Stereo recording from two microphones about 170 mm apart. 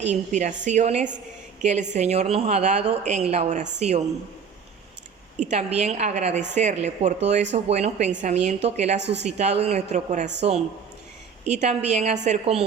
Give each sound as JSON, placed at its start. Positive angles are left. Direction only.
{"t": 0.0, "sound": "a woman's voice", "side_deg": -45}
{"t": 5.4, "sound": "a woman's voice", "side_deg": -40}
{"t": 9.0, "sound": "a woman's voice", "side_deg": -90}
{"t": 9.2, "sound": "a woman's voice", "side_deg": -40}
{"t": 11.4, "sound": "a woman's voice", "side_deg": -45}